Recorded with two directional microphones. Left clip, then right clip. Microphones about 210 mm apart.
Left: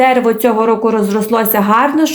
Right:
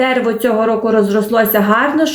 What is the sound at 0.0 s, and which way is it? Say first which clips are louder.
Speech: left 4 dB; 35° left (ahead or behind).